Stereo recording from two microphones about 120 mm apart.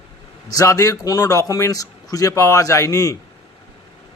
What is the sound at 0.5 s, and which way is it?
Speech, 25° left (ahead or behind).